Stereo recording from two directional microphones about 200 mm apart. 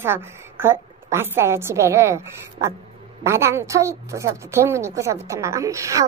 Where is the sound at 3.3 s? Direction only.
15° right (ahead or behind).